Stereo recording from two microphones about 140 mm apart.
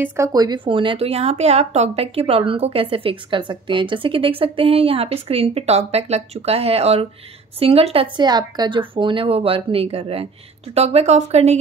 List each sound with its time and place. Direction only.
0.0 s speech: 15° right (ahead or behind)
0.3 s a woman's voice: 30° right (ahead or behind); by 11.5 s 50° right (ahead or behind)